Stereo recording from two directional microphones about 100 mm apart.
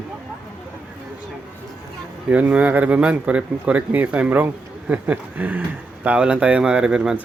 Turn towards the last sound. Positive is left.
turn(degrees=-5)  # may be behind; listen again after turning